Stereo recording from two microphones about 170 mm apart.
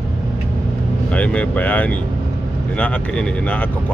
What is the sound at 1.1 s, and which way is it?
Speech, 5° left (ahead or behind).